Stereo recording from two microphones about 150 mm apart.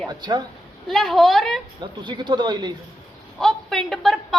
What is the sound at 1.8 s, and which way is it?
Speech, 30° right (ahead or behind).